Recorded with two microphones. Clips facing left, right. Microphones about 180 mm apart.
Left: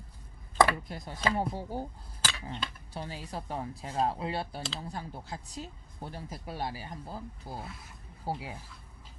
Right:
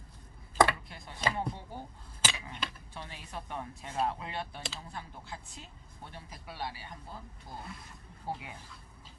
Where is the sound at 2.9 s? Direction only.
35° left (ahead or behind).